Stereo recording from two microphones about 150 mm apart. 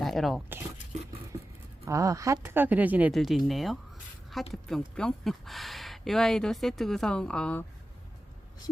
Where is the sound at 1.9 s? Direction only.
20° right (ahead or behind); by 7.6 s 5° left (ahead or behind).